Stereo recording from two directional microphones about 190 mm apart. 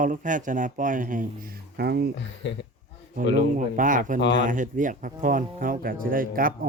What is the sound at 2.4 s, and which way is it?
A man's voice, 70° left (ahead or behind).